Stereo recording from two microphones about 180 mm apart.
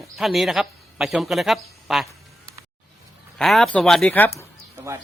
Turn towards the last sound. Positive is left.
turn(degrees=10)  # may be behind; listen again after turning